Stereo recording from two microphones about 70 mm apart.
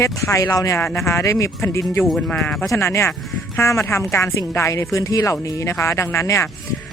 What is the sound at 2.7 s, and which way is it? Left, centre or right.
Speech, left.